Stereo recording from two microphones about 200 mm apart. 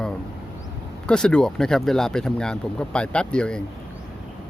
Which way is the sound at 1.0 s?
5° left (ahead or behind).